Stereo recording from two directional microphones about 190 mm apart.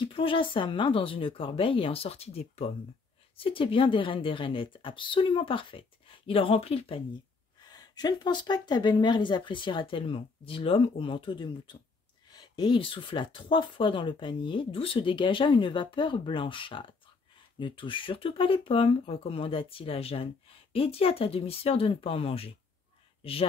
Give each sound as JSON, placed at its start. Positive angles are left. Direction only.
{"t": 0.0, "sound": "speech", "side_deg": 25}
{"t": 7.6, "sound": "speech", "side_deg": 20}